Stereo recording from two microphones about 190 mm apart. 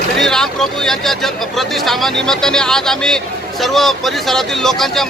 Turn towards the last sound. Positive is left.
turn(degrees=0)  # may be behind; listen again after turning